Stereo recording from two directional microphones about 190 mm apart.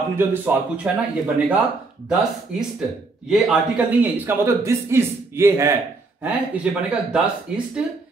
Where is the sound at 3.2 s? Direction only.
Centre (ahead or behind).